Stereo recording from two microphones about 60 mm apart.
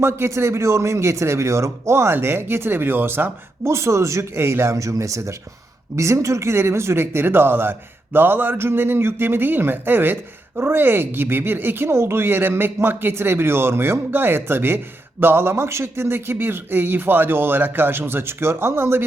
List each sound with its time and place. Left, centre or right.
0.0 s speech: right
3.7 s speech: right
4.8 s speech: right